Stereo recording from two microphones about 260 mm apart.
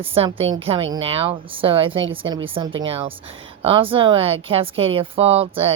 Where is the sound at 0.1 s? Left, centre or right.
Right.